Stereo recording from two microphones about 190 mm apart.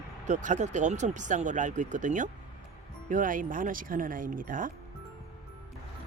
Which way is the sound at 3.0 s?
45° right (ahead or behind).